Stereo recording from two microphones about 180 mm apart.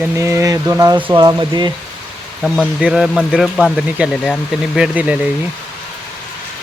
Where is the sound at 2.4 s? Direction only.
Centre (ahead or behind).